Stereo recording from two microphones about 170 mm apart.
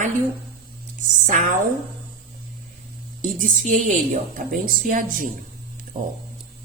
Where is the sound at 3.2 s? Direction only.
50° right (ahead or behind).